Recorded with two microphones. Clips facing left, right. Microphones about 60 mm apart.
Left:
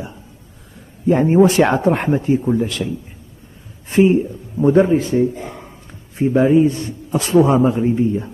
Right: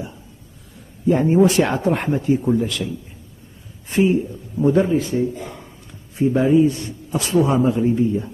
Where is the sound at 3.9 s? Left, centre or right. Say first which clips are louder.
Left 4 dB; left.